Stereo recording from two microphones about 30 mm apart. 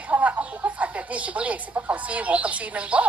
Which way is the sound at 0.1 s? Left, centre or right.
Right.